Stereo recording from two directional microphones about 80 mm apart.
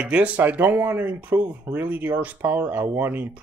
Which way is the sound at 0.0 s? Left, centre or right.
Centre.